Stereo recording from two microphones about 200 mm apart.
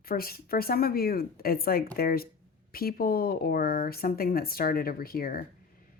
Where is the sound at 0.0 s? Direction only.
50° left (ahead or behind).